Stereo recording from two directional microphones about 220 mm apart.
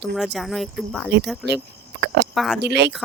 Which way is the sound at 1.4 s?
50° right (ahead or behind).